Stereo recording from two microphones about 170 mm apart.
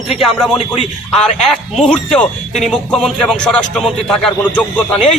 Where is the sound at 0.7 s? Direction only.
40° left (ahead or behind).